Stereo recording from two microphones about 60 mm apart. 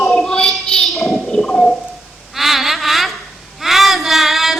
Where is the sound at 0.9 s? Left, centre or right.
Centre.